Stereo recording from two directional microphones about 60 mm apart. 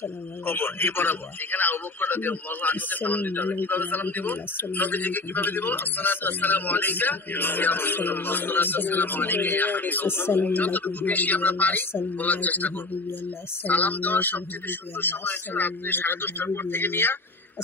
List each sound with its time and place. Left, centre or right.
0.5 s a man's voice: left
10.4 s a man's voice: left